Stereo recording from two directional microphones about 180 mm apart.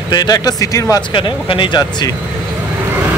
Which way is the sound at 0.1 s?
20° left (ahead or behind).